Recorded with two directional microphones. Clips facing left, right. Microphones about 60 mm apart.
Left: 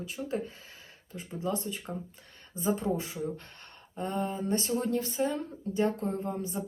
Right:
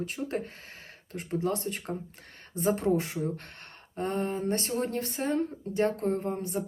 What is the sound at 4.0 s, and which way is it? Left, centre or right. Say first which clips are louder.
Speech: right 2 dB; right.